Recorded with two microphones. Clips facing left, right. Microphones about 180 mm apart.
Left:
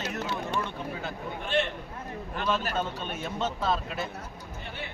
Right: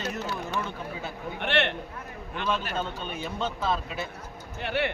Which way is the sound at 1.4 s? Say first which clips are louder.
Right 2 dB; 70° right (ahead or behind).